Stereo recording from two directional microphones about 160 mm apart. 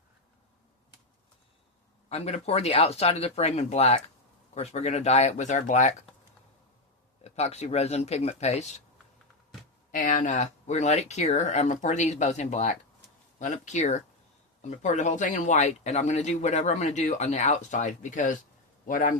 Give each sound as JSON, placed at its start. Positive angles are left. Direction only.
{"t": 2.0, "sound": "speech", "side_deg": 40}
{"t": 7.2, "sound": "speech", "side_deg": 40}
{"t": 9.9, "sound": "a man's voice", "side_deg": 55}